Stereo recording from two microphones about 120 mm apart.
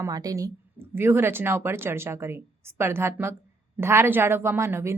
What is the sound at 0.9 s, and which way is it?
A woman's voice, 20° right (ahead or behind).